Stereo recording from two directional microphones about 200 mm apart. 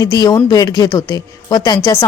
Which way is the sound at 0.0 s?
20° left (ahead or behind).